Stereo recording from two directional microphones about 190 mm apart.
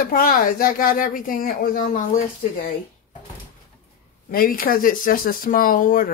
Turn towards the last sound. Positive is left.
turn(degrees=45)  # may be behind; listen again after turning